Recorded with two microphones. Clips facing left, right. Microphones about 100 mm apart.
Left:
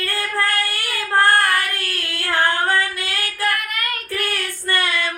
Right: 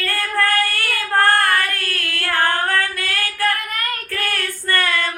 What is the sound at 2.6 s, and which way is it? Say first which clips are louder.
Female singing: left 1 dB; 15° left (ahead or behind).